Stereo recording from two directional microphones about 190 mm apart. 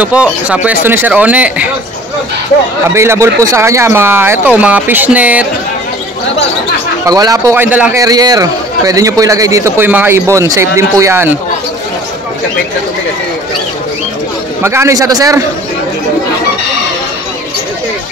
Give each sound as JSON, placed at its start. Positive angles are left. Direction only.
{"t": 0.0, "sound": "a man's voice", "side_deg": -5}
{"t": 2.9, "sound": "a man's voice", "side_deg": -15}
{"t": 7.1, "sound": "a man's voice", "side_deg": -20}
{"t": 14.6, "sound": "a man's voice", "side_deg": -15}